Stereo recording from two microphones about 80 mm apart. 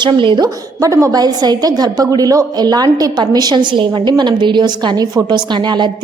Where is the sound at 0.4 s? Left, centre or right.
Right.